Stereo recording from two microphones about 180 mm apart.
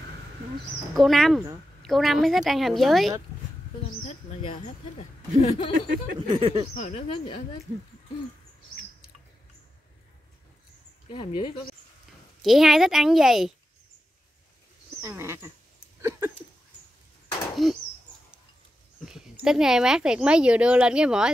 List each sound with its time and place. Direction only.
0.9 s speech: centre (ahead or behind)
4.4 s speech: 35° left (ahead or behind)
6.2 s speech: 30° right (ahead or behind)
6.8 s speech: 35° left (ahead or behind)
11.1 s speech: 30° left (ahead or behind)
12.4 s speech: centre (ahead or behind)
15.0 s speech: 15° right (ahead or behind)
16.0 s a sound: 15° right (ahead or behind)
17.6 s speech: centre (ahead or behind)
19.4 s speech: 5° right (ahead or behind)